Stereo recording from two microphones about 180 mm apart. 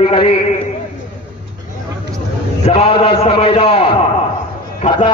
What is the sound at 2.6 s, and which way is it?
A man's voice, 35° left (ahead or behind).